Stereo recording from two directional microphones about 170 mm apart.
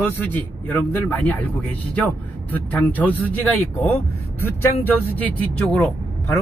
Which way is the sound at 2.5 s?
10° left (ahead or behind).